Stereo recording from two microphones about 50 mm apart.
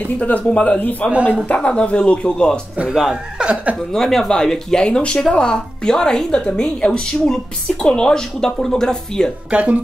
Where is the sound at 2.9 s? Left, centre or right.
Centre.